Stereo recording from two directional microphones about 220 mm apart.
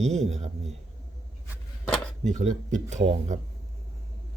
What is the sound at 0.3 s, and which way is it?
Speech, 30° right (ahead or behind).